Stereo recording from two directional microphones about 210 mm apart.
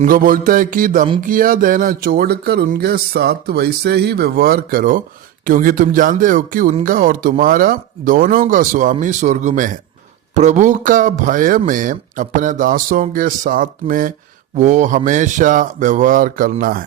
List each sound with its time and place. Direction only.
0.0 s speech: 40° right (ahead or behind)